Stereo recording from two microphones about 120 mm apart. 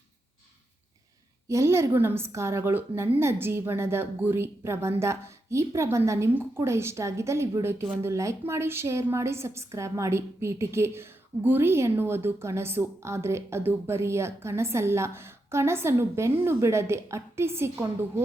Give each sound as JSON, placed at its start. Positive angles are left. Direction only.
{"t": 1.5, "sound": "a woman's voice", "side_deg": -25}